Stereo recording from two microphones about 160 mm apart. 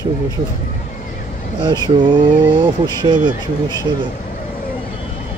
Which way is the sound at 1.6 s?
30° right (ahead or behind).